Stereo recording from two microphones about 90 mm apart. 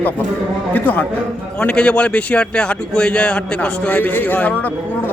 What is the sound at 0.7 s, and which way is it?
A man's voice, 20° left (ahead or behind).